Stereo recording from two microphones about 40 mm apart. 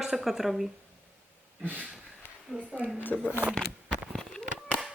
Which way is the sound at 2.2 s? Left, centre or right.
Left.